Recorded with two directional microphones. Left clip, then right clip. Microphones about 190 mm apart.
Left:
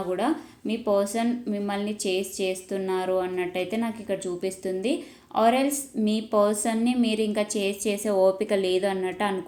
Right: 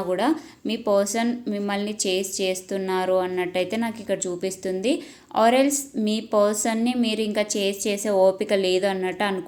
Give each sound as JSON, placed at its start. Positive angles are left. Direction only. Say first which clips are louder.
{"t": 0.1, "sound": "speech", "louder": "right 4 dB", "side_deg": -25}